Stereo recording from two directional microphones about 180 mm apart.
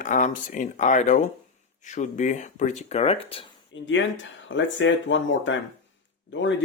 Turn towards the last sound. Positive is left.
turn(degrees=90)